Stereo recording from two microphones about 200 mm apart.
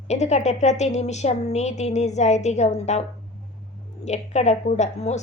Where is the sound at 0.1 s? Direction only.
35° left (ahead or behind).